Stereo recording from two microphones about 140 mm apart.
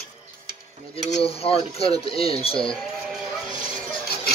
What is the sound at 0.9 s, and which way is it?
Speech, 45° left (ahead or behind).